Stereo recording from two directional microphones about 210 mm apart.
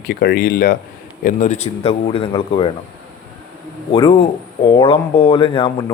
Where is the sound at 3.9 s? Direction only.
25° left (ahead or behind).